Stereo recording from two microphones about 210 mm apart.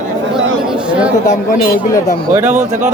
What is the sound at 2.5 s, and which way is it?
Speech, 35° right (ahead or behind).